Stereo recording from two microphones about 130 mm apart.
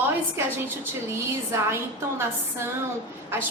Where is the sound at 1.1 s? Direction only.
20° right (ahead or behind).